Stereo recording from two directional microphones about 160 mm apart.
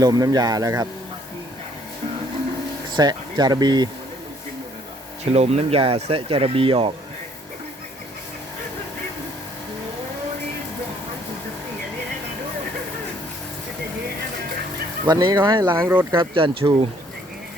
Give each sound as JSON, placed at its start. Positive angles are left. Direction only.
{"t": 0.0, "sound": "speech", "side_deg": -25}
{"t": 2.9, "sound": "speech", "side_deg": -25}
{"t": 5.2, "sound": "speech", "side_deg": -45}
{"t": 15.0, "sound": "speech", "side_deg": -25}
{"t": 15.8, "sound": "speech", "side_deg": -10}
{"t": 16.1, "sound": "speech", "side_deg": -30}